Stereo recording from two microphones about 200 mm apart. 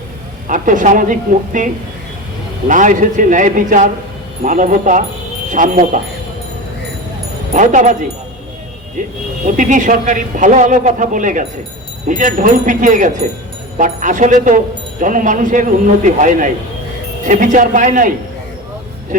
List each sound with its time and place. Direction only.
0.4 s a man's voice: 40° right (ahead or behind)
7.5 s a man's voice: 40° right (ahead or behind)
9.0 s a man's voice: 40° right (ahead or behind)